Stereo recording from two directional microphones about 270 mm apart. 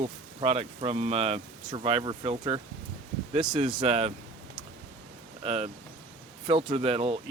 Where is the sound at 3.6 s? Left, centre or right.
Centre.